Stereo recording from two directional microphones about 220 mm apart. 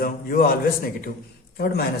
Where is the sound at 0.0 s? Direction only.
40° left (ahead or behind).